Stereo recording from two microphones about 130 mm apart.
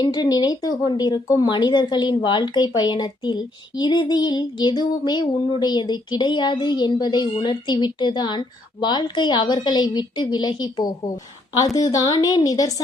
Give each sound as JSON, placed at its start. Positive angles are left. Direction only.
{"t": 0.0, "sound": "a woman's voice", "side_deg": 35}